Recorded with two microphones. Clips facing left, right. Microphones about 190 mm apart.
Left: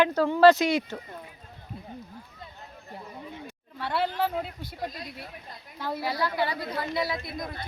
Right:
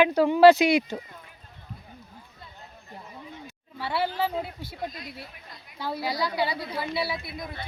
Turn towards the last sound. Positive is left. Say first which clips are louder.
# even
turn(degrees=-5)  # may be behind; listen again after turning